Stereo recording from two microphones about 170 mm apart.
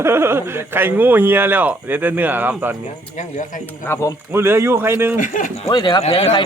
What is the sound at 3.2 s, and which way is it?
Speech, 45° left (ahead or behind).